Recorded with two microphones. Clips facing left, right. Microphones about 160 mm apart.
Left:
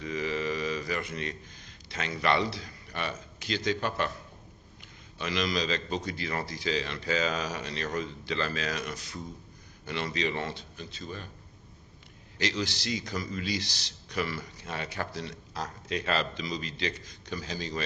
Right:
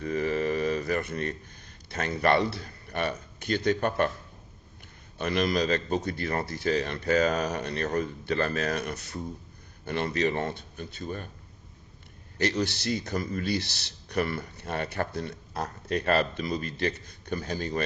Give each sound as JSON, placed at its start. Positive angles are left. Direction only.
{"t": 0.0, "sound": "a sound", "side_deg": -55}
{"t": 1.9, "sound": "speech", "side_deg": -55}
{"t": 5.1, "sound": "speech", "side_deg": -55}
{"t": 12.4, "sound": "speech", "side_deg": -55}